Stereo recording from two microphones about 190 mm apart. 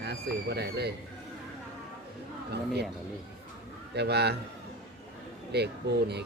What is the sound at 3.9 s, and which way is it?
Speech, 60° right (ahead or behind).